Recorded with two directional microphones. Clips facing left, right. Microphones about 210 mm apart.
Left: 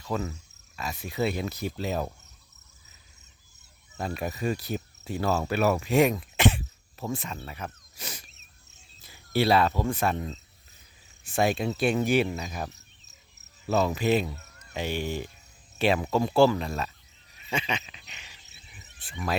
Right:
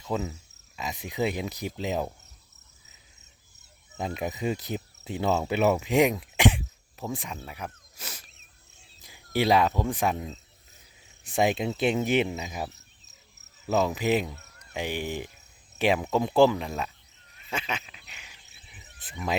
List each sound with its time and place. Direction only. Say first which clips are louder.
0.0 s cricket: right 1 dB; 15° right (ahead or behind)
0.8 s speech: even; 20° right (ahead or behind)
3.9 s speech: right 1 dB; 20° right (ahead or behind); by 8.2 s 5° right (ahead or behind)
9.0 s cricket: left 1 dB; 15° right (ahead or behind)
9.9 s speech: even; 15° right (ahead or behind)
13.7 s speech: even; 15° right (ahead or behind)
17.5 s a sound: left 2 dB; 5° right (ahead or behind)
18.1 s cricket: even; 5° right (ahead or behind)